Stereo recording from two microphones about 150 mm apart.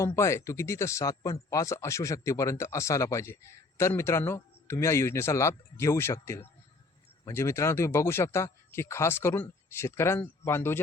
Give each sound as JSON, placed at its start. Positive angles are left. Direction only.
{"t": 0.2, "sound": "speech", "side_deg": 20}